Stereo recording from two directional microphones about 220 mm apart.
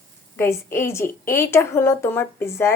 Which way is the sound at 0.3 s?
10° left (ahead or behind).